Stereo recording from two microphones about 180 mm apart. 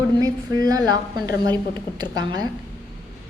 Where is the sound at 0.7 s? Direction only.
20° right (ahead or behind).